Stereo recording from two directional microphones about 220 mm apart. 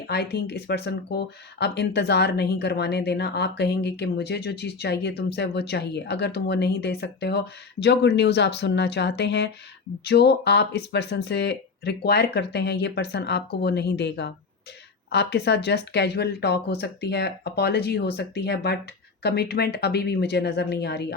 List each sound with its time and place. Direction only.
0.1 s speech: 50° left (ahead or behind)